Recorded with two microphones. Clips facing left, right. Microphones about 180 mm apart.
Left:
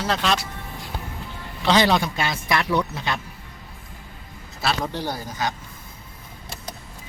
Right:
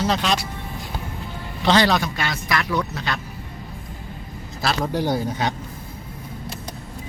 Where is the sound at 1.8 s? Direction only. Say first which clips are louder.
Even; 20° left (ahead or behind).